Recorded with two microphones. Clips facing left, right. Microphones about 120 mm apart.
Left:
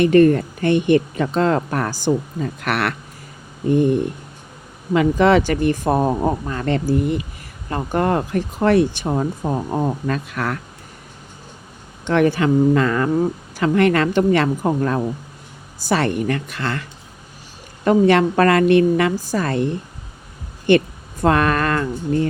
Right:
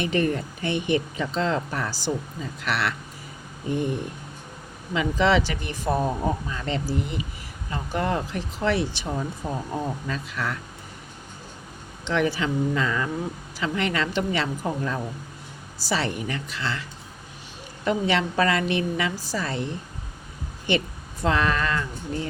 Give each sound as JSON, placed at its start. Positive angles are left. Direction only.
{"t": 0.0, "sound": "speech", "side_deg": 50}
{"t": 4.9, "sound": "speech", "side_deg": 50}
{"t": 12.0, "sound": "a woman's voice", "side_deg": 50}
{"t": 17.8, "sound": "speech", "side_deg": 50}
{"t": 20.7, "sound": "speech", "side_deg": 55}